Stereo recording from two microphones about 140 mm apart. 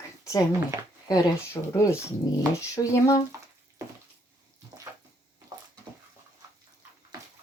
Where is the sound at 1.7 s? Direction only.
20° left (ahead or behind).